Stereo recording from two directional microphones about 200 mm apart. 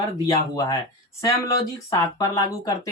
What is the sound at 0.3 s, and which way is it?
Speech, 20° left (ahead or behind).